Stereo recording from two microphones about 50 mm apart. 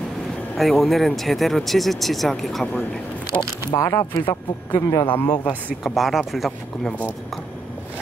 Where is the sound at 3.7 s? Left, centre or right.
Left.